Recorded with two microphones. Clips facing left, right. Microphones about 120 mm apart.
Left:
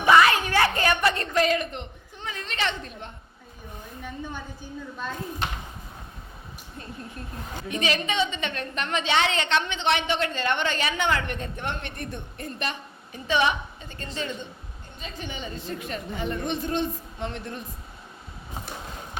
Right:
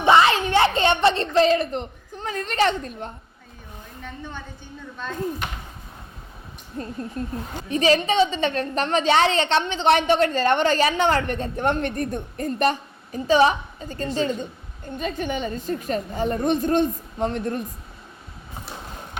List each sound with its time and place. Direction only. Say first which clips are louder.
0.0 s a sound: right 2 dB; 25° right (ahead or behind); by 3.1 s 40° right (ahead or behind)
6.8 s a woman's voice: right 10 dB; 35° right (ahead or behind)
14.9 s a woman's voice: right 10 dB; 55° right (ahead or behind)